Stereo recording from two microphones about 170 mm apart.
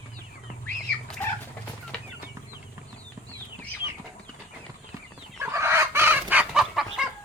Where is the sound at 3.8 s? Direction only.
90° left.